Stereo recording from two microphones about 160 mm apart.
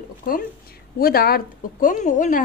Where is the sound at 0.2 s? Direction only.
65° left (ahead or behind).